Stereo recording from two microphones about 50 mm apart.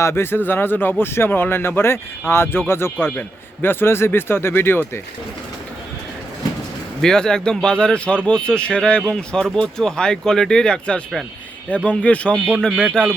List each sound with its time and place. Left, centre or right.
0.0 s speech: left
7.0 s speech: centre
12.8 s speech: centre